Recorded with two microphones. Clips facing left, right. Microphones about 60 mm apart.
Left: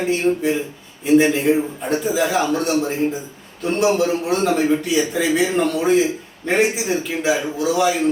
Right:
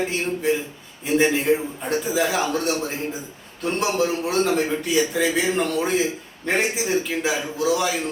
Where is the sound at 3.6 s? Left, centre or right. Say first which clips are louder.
Left 5 dB; centre.